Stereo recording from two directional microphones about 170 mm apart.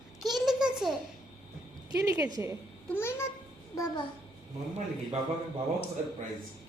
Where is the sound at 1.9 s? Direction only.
20° right (ahead or behind).